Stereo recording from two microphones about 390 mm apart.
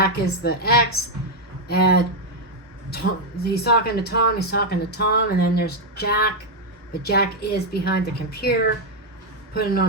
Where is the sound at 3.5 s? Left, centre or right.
Left.